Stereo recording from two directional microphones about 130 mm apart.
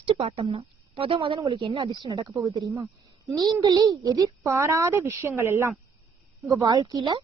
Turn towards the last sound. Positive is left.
turn(degrees=-30)  # may be behind; listen again after turning